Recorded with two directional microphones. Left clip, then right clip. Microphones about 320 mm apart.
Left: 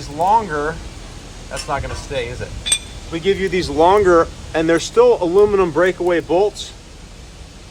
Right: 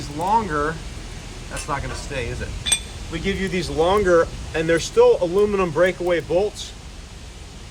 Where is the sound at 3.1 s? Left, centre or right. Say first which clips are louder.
Left 7 dB; centre.